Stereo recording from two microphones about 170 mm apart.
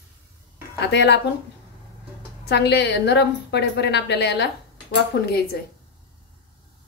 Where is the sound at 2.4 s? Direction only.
80° left.